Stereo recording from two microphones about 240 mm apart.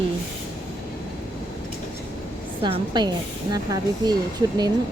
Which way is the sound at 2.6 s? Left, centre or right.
Centre.